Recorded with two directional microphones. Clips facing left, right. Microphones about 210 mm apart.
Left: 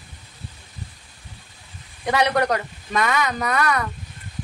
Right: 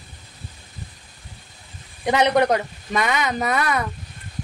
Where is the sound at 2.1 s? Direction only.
20° right (ahead or behind).